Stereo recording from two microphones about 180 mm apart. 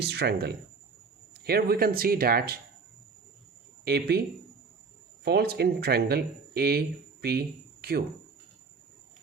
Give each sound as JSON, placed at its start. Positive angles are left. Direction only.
{"t": 0.0, "sound": "speech", "side_deg": -65}
{"t": 3.8, "sound": "speech", "side_deg": -65}
{"t": 5.2, "sound": "speech", "side_deg": -65}